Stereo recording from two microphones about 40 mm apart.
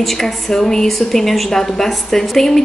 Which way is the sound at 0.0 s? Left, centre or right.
Centre.